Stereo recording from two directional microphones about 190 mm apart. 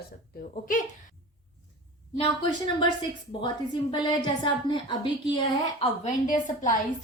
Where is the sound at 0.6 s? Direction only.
45° left (ahead or behind).